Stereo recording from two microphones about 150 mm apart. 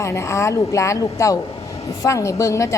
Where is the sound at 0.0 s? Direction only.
20° left (ahead or behind).